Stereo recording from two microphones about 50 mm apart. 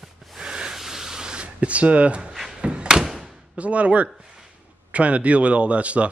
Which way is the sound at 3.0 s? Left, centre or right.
Centre.